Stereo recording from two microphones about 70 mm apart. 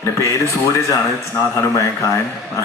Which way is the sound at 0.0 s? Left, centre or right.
Left.